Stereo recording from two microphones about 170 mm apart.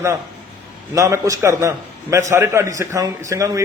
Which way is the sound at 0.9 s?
20° right (ahead or behind).